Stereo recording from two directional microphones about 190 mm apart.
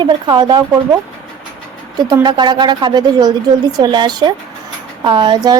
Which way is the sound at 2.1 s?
20° right (ahead or behind).